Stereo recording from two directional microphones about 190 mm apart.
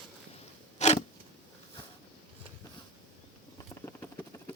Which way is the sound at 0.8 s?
35° left (ahead or behind).